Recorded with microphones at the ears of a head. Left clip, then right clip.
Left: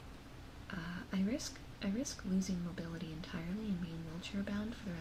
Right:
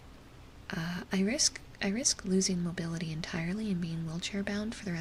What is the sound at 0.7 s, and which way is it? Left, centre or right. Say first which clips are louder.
Speech: right 8 dB; right.